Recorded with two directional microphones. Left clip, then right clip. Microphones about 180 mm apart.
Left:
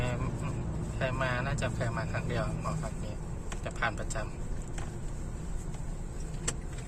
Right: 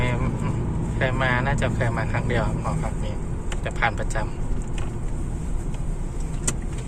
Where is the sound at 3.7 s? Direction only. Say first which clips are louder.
Right 9 dB; 15° left (ahead or behind).